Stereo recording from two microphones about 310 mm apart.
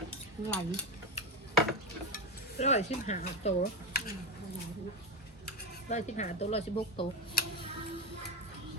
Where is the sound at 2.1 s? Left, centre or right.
Left.